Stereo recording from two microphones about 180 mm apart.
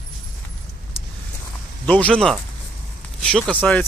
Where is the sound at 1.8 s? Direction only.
5° left (ahead or behind).